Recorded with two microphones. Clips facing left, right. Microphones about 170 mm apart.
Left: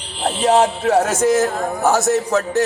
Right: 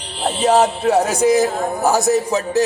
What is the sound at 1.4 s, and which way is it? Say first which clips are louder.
Speech: even; centre (ahead or behind).